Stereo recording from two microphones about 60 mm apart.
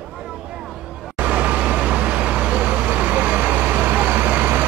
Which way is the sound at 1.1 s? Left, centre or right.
Right.